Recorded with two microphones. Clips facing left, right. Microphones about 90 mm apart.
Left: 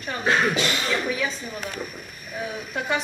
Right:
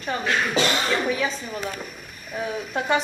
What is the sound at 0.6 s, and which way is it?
Speech, 30° right (ahead or behind).